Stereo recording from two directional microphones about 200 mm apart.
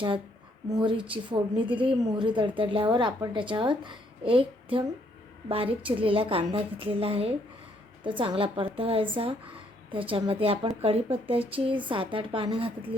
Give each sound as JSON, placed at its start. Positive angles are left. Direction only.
{"t": 0.7, "sound": "a woman's voice", "side_deg": -20}